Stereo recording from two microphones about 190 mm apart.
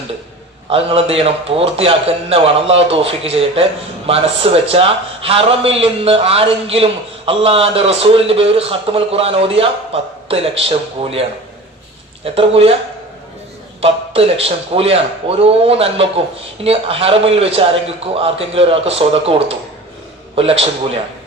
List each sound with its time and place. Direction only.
0.7 s a man's voice: 30° right (ahead or behind)
13.8 s a man's voice: 30° right (ahead or behind)